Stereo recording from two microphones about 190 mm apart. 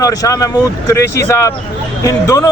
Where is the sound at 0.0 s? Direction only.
20° left (ahead or behind).